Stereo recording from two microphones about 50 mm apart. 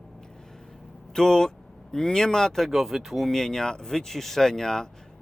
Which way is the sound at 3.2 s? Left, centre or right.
Centre.